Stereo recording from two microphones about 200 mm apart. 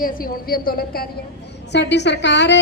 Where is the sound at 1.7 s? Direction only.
60° left (ahead or behind).